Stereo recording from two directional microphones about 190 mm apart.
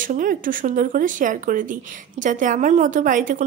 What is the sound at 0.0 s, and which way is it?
A woman's voice, 45° right (ahead or behind).